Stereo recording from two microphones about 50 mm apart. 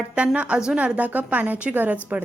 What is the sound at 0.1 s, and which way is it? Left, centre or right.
A woman's voice, right.